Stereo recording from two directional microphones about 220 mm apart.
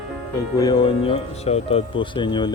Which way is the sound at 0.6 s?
20° left (ahead or behind).